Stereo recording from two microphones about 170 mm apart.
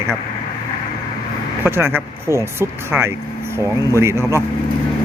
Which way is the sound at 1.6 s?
15° right (ahead or behind).